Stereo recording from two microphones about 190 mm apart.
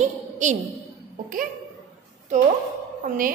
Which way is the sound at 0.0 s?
40° right (ahead or behind).